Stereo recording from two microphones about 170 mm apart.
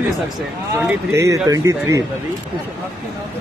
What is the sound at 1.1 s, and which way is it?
Speech, 15° right (ahead or behind).